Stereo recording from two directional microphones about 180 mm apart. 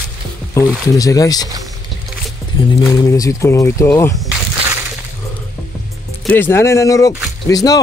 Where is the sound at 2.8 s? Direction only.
20° left (ahead or behind).